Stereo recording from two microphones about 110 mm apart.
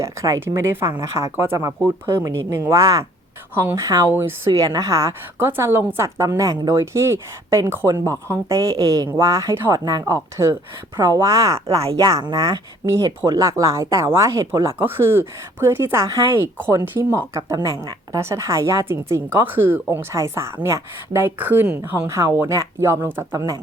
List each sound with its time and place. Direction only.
0.0 s a woman's voice: 25° right (ahead or behind)
4.1 s a woman's voice: 20° right (ahead or behind)
10.9 s a woman's voice: 30° right (ahead or behind)
11.7 s speech: 65° right (ahead or behind)
11.9 s a woman's voice: 35° right (ahead or behind)